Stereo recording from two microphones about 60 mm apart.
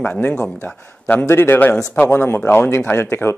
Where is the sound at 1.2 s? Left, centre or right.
Left.